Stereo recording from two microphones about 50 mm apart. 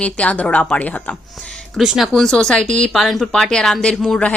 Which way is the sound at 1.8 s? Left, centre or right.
Centre.